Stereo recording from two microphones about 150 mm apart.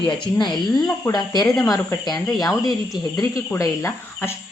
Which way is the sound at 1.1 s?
25° left (ahead or behind).